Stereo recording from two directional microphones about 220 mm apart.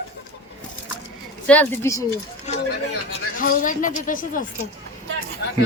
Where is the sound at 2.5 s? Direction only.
30° left (ahead or behind).